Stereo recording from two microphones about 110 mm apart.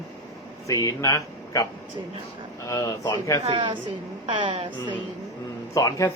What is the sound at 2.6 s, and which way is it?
Speech, 30° left (ahead or behind).